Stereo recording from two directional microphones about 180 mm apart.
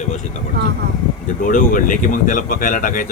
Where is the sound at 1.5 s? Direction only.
50° left (ahead or behind).